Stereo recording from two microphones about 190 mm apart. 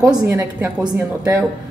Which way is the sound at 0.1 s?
15° right (ahead or behind).